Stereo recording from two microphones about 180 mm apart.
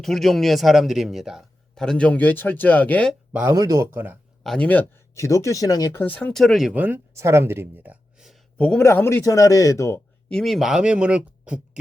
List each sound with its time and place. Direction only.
0.0 s a man's voice: centre (ahead or behind)
3.3 s speech: 15° right (ahead or behind)
4.4 s speech: 5° left (ahead or behind)
6.0 s speech: 10° left (ahead or behind)